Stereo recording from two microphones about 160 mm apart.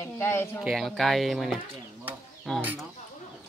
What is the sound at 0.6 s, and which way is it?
Speech, centre (ahead or behind).